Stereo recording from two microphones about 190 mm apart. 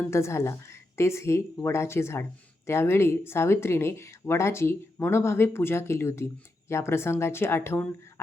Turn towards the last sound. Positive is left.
turn(degrees=10)  # may be behind; listen again after turning